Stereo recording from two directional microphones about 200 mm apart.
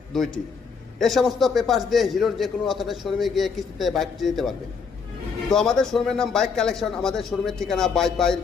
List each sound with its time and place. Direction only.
0.1 s a man's voice: centre (ahead or behind)